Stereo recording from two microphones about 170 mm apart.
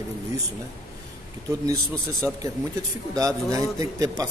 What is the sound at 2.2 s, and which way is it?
A man's voice, 15° right (ahead or behind).